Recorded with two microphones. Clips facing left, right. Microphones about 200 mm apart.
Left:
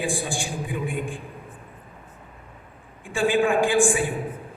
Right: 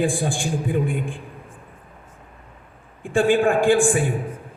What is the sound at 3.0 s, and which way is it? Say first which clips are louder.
A man's voice: right 4 dB; 55° right (ahead or behind).